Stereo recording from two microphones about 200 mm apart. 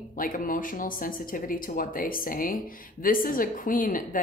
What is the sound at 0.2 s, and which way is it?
Speech, 45° left (ahead or behind).